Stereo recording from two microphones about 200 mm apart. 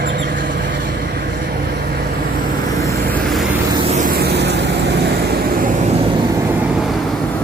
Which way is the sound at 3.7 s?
25° right (ahead or behind).